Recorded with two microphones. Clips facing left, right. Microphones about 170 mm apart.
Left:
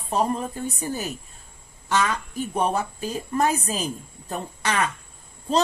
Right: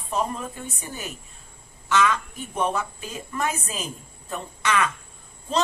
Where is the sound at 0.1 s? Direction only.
35° left (ahead or behind).